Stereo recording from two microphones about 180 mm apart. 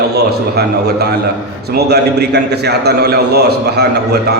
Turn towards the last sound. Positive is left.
turn(degrees=-65)  # may be behind; listen again after turning